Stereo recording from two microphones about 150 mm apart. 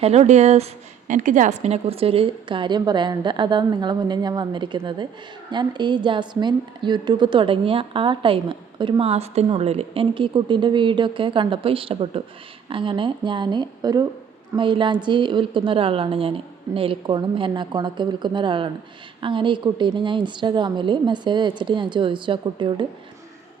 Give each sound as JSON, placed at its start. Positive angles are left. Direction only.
{"t": 0.0, "sound": "a woman's voice", "side_deg": -45}